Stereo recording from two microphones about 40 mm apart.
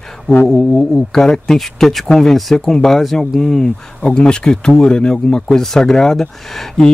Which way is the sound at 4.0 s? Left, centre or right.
Left.